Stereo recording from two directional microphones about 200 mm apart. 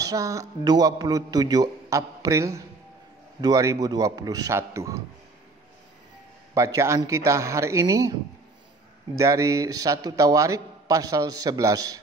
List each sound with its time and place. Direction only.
0.0 s a man's voice: 15° right (ahead or behind)
6.5 s a man's voice: 15° right (ahead or behind)